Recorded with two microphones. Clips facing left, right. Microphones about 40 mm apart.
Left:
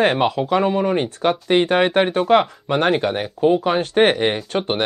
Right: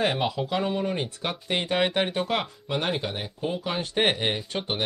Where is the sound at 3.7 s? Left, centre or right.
Left.